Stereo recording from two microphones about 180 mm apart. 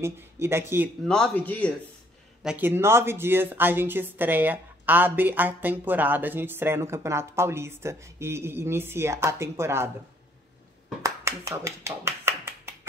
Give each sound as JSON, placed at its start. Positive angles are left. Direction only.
{"t": 0.0, "sound": "speech", "side_deg": -15}
{"t": 1.0, "sound": "speech", "side_deg": 5}
{"t": 2.4, "sound": "speech", "side_deg": -10}
{"t": 11.0, "sound": "a sound", "side_deg": -15}